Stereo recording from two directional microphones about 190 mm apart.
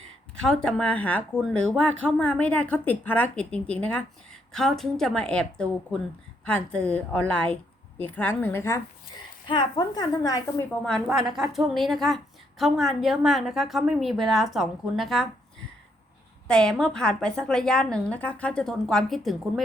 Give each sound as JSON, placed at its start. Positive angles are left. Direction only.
{"t": 0.4, "sound": "a woman's voice", "side_deg": 0}
{"t": 10.8, "sound": "a woman's voice", "side_deg": 0}
{"t": 16.5, "sound": "a woman's voice", "side_deg": 5}